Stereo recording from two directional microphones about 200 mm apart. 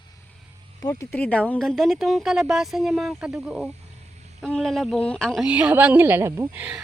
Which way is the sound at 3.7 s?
35° right (ahead or behind).